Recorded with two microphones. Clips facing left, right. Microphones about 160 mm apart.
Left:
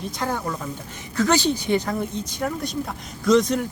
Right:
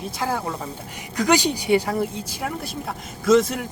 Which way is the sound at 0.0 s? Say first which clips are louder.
Right 1 dB; 5° right (ahead or behind).